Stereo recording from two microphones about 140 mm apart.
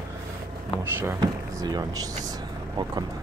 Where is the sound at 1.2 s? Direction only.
30° right (ahead or behind).